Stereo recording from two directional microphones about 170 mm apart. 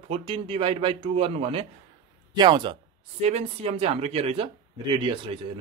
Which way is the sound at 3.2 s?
40° right (ahead or behind).